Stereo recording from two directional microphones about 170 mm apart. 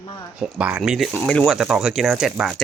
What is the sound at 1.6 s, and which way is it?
Speech, 5° right (ahead or behind).